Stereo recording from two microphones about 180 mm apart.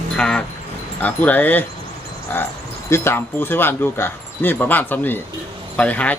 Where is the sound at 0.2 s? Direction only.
5° left (ahead or behind).